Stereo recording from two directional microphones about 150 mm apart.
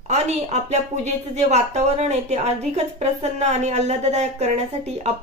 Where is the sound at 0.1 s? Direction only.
50° right (ahead or behind).